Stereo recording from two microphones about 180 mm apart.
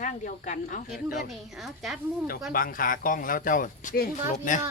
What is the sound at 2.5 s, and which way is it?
Speech, 50° left (ahead or behind).